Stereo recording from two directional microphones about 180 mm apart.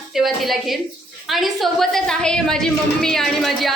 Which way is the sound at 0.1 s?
Centre (ahead or behind).